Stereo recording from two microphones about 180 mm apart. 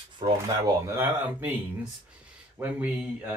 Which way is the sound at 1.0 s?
10° right (ahead or behind).